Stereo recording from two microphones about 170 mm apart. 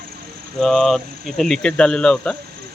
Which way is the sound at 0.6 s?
Centre (ahead or behind).